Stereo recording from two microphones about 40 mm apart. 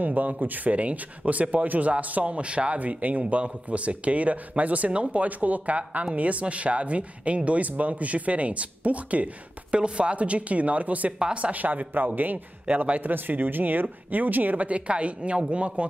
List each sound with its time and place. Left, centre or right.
0.0 s speech: right
13.1 s a man's voice: right
14.7 s speech: right